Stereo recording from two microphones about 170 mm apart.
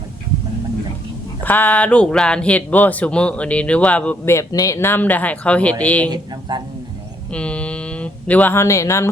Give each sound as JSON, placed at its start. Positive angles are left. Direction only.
{"t": 1.5, "sound": "speech", "side_deg": 10}
{"t": 6.5, "sound": "a man's voice", "side_deg": -25}
{"t": 7.3, "sound": "speech", "side_deg": 5}